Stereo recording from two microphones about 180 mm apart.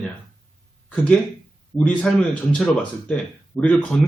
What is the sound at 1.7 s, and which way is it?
Speech, 5° left (ahead or behind).